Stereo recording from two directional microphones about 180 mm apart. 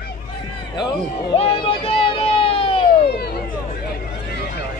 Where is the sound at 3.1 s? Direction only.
60° left (ahead or behind).